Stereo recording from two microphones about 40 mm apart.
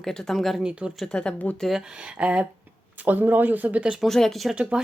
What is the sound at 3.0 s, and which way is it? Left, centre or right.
Speech, right.